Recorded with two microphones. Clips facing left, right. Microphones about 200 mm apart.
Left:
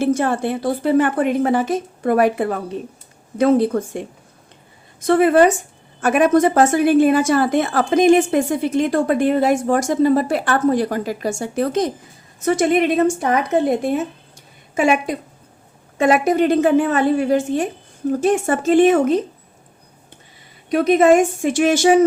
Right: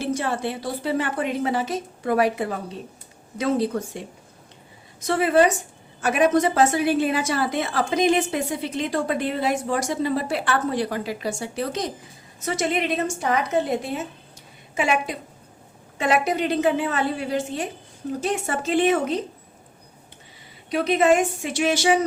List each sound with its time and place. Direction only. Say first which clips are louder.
0.0 s a woman's voice: left 7 dB; 50° left (ahead or behind)
20.7 s a woman's voice: left 6 dB; 50° left (ahead or behind)